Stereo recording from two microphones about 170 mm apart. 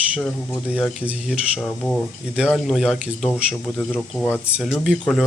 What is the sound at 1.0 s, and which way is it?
Speech, 5° right (ahead or behind).